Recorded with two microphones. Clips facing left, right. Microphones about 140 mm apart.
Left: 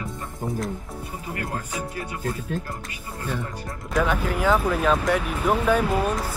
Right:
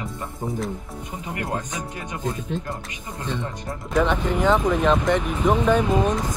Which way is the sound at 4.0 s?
5° left (ahead or behind).